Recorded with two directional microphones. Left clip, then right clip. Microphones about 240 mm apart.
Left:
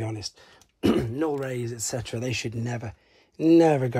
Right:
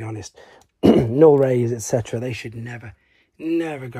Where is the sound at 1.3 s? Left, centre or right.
Right.